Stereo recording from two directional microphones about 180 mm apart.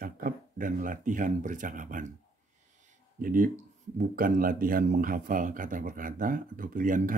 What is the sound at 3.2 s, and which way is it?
Speech, 50° right (ahead or behind).